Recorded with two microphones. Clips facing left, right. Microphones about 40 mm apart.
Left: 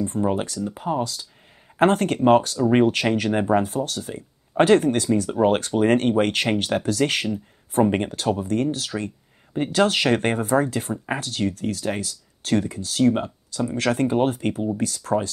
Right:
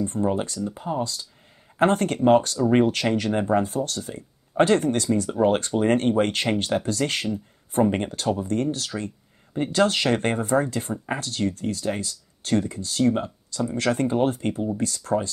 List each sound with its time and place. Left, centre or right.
0.2 s speech: centre
0.5 s speech: centre
7.1 s speech: centre
10.4 s speech: centre
10.9 s speech: centre